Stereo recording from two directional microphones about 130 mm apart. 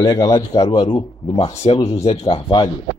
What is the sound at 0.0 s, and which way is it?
Speech, 30° left (ahead or behind).